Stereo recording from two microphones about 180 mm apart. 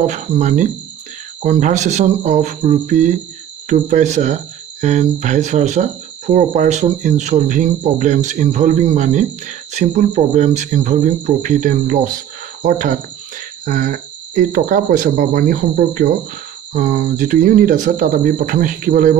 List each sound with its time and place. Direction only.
0.0 s speech: 40° right (ahead or behind)